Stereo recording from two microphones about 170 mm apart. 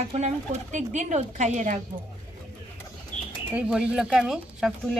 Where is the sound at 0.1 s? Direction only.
45° right (ahead or behind).